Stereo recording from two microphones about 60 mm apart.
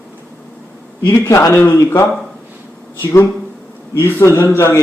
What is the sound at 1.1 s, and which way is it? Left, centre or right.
A man's voice, left.